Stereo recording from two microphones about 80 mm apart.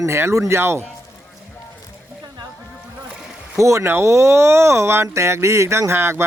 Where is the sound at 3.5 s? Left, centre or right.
Right.